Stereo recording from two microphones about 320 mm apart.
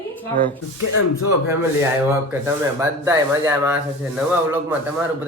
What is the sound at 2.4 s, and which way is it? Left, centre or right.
Speech, centre.